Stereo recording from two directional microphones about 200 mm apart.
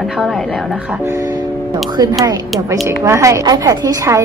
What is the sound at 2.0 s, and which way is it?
A woman's voice, 20° right (ahead or behind).